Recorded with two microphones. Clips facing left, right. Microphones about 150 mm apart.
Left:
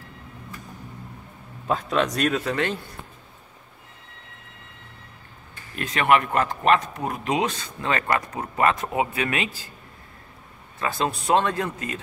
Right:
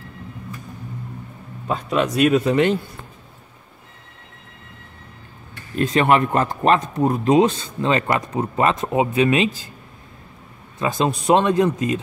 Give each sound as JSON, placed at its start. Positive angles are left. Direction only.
{"t": 1.7, "sound": "speech", "side_deg": 0}
{"t": 5.8, "sound": "speech", "side_deg": -30}
{"t": 10.8, "sound": "speech", "side_deg": -15}